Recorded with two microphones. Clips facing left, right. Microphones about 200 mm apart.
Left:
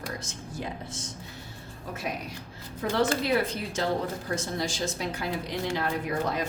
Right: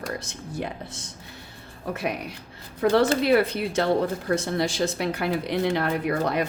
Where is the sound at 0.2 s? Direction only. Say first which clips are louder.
Right 5 dB; 65° right (ahead or behind).